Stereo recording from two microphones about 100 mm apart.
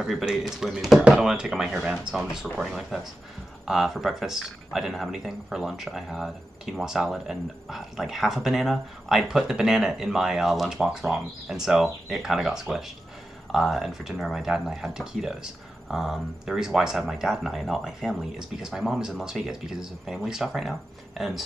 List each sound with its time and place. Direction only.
0.0 s speech: 5° right (ahead or behind)